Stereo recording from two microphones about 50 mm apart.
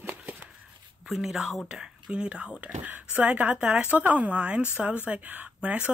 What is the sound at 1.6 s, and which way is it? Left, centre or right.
Speech, centre.